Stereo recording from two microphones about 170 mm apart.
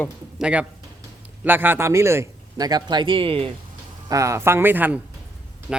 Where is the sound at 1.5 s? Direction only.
10° right (ahead or behind); by 3.5 s 30° right (ahead or behind).